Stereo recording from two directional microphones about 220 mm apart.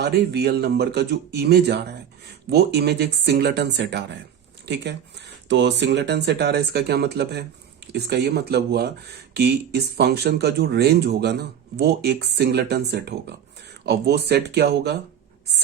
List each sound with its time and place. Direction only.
0.0 s speech: 50° right (ahead or behind)